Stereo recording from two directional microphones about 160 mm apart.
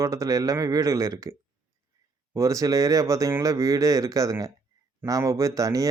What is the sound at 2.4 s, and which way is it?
Speech, 20° right (ahead or behind).